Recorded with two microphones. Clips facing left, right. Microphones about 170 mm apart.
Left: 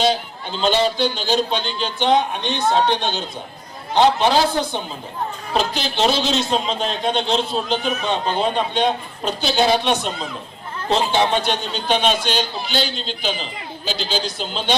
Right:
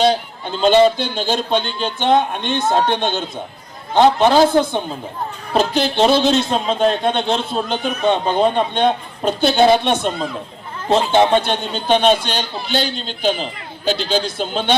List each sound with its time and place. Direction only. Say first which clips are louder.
0.6 s a man's voice: right 6 dB; 50° right (ahead or behind)